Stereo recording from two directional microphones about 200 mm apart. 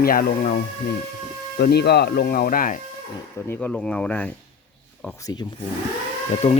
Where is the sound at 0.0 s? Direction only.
45° left (ahead or behind).